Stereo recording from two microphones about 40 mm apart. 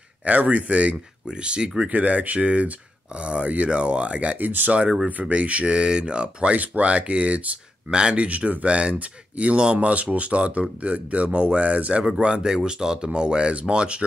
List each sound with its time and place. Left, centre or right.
0.2 s speech: right
1.9 s speech: right
4.4 s speech: right
5.3 s speech: right
5.8 s speech: right
12.5 s speech: right